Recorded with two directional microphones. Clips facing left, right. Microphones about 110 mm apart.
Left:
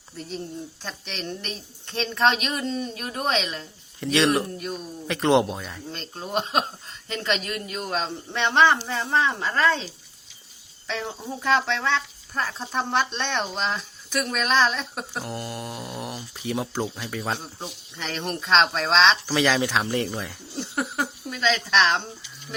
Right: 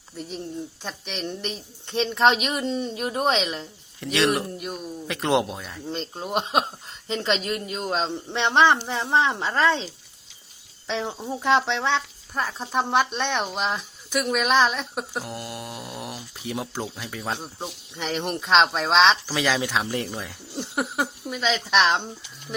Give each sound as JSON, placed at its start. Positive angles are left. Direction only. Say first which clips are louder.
{"t": 0.2, "sound": "speech", "louder": "right 1 dB", "side_deg": -15}
{"t": 4.0, "sound": "speech", "louder": "left 1 dB", "side_deg": 0}
{"t": 4.5, "sound": "speech", "louder": "even", "side_deg": -15}
{"t": 5.9, "sound": "a woman's voice", "louder": "right 2 dB", "side_deg": -20}
{"t": 12.3, "sound": "speech", "louder": "right 2 dB", "side_deg": -10}
{"t": 17.4, "sound": "speech", "louder": "right 2 dB", "side_deg": -15}
{"t": 20.6, "sound": "speech", "louder": "right 1 dB", "side_deg": -10}